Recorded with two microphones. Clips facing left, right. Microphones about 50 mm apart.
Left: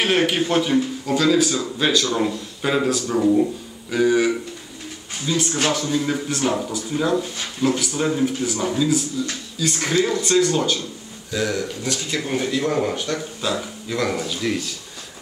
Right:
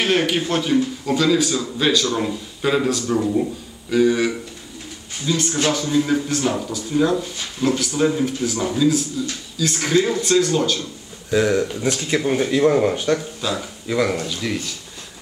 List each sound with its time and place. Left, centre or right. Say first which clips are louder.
0.0 s speech: even; centre
11.2 s speech: right 6 dB; right
13.4 s speech: even; centre
13.8 s speech: right 4 dB; centre
14.1 s speech: left 1 dB; centre